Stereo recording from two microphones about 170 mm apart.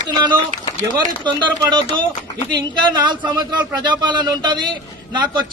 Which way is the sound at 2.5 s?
25° right (ahead or behind).